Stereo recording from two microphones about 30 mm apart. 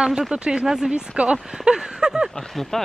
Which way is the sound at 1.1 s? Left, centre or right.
Right.